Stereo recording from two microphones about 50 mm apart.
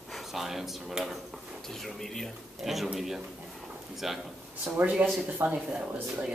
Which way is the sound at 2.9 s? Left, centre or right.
Centre.